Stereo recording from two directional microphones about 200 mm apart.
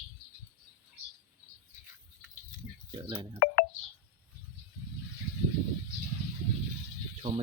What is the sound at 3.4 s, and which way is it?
Telephone dialing, 45° left (ahead or behind).